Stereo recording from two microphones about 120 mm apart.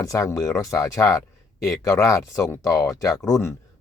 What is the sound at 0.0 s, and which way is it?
Speech, 25° left (ahead or behind).